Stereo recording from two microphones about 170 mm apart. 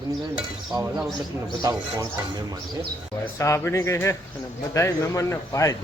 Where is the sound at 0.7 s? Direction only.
20° right (ahead or behind).